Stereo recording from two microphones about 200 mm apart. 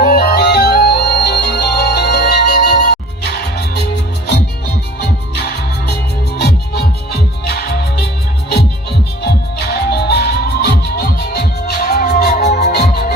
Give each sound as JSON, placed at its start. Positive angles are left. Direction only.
{"t": 0.0, "sound": "music", "side_deg": 50}
{"t": 4.9, "sound": "music", "side_deg": 55}
{"t": 9.2, "sound": "music", "side_deg": 55}